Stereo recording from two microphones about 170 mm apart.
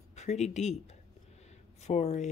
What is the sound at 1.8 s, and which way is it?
Speech, 40° left (ahead or behind).